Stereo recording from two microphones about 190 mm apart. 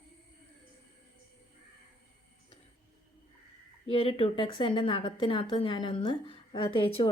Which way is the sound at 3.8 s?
30° left (ahead or behind).